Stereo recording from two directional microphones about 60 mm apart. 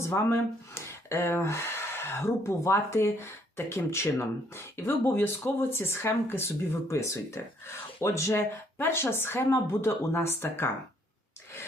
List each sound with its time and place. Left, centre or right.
0.0 s speech: left